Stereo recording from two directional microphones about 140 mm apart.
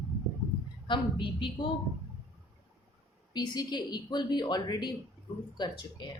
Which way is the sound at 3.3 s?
30° left (ahead or behind).